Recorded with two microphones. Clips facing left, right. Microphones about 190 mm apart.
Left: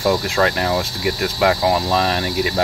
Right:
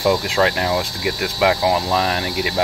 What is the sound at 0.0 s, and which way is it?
Speech, 10° right (ahead or behind).